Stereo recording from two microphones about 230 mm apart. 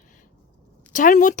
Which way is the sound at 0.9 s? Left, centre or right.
Left.